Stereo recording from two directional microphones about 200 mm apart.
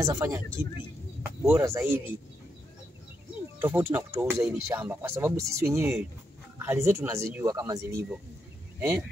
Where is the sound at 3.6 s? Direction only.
10° right (ahead or behind).